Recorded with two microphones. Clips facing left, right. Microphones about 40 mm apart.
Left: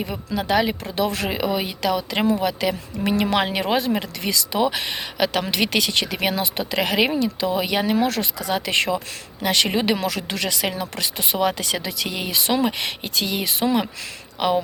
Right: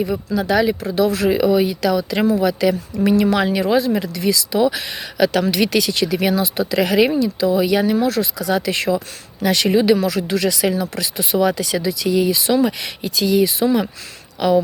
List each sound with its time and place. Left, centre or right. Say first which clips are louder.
0.3 s speech: right 3 dB; left
0.9 s speech: right 6 dB; left
1.3 s speech: right 8 dB; left
7.9 s speech: right 3 dB; left
8.4 s speech: right 2 dB; left